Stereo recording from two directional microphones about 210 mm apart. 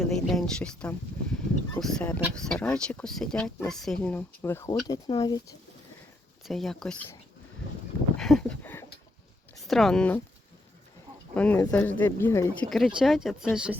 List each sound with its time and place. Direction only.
0.0 s speech: centre (ahead or behind); by 5.5 s 20° left (ahead or behind)
6.4 s speech: centre (ahead or behind)
8.1 s a sound: 5° left (ahead or behind)
9.6 s speech: centre (ahead or behind)
11.3 s speech: 5° left (ahead or behind)
13.0 s speech: centre (ahead or behind)